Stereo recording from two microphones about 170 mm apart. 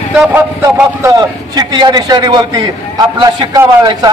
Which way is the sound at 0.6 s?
15° right (ahead or behind).